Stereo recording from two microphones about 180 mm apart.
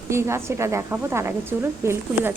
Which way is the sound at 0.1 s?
15° right (ahead or behind).